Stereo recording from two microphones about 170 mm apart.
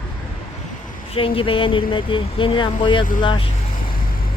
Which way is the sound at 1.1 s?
30° left (ahead or behind).